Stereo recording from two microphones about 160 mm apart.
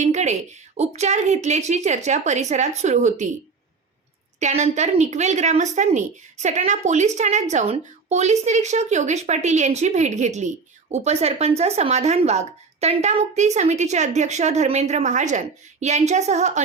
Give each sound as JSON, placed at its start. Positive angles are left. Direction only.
{"t": 0.0, "sound": "a woman's voice", "side_deg": -45}
{"t": 4.4, "sound": "a woman's voice", "side_deg": -45}